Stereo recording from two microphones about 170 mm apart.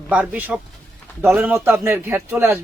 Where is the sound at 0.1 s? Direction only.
10° right (ahead or behind).